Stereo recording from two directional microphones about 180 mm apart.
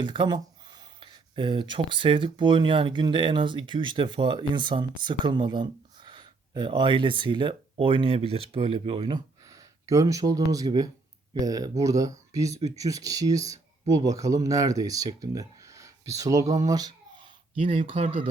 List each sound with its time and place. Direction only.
0.0 s speech: 25° right (ahead or behind)